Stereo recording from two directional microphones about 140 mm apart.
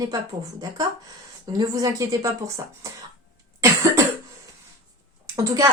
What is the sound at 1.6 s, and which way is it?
Speech, 25° right (ahead or behind).